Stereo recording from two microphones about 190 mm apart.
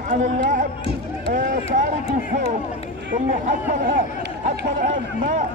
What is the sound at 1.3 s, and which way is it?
Speech, 40° right (ahead or behind).